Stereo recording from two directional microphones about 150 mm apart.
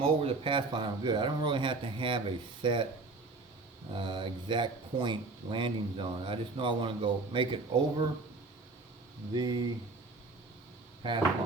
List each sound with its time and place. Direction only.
0.0 s speech: 40° right (ahead or behind)
3.9 s speech: 30° right (ahead or behind)
9.3 s speech: 30° right (ahead or behind)